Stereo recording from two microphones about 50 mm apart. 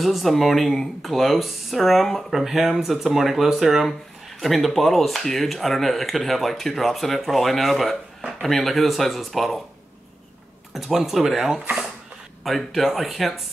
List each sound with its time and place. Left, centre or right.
0.0 s speech: centre
10.7 s speech: centre